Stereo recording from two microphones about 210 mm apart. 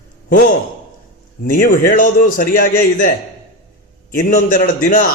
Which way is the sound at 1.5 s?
45° left (ahead or behind).